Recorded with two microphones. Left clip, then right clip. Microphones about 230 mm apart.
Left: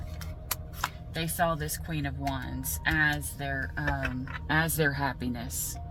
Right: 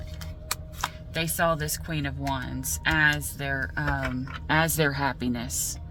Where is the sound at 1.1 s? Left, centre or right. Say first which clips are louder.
Right 4 dB; right.